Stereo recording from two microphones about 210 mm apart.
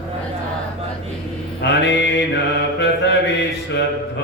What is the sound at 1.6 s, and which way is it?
Mantra, 55° left (ahead or behind).